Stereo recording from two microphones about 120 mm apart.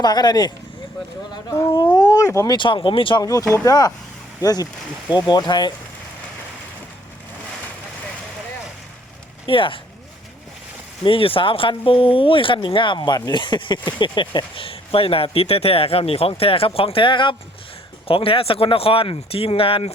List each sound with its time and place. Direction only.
0.0 s speech: 35° left (ahead or behind)
2.6 s speech: 45° left (ahead or behind)
3.2 s speech: 25° left (ahead or behind)
9.5 s speech: 45° left (ahead or behind)
11.0 s speech: 45° left (ahead or behind)